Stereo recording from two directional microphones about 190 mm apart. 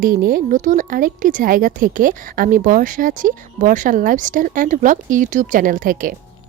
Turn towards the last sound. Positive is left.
turn(degrees=-45)  # may be behind; listen again after turning